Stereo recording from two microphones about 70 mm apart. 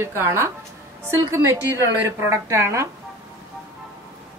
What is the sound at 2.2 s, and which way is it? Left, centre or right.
Speech, right.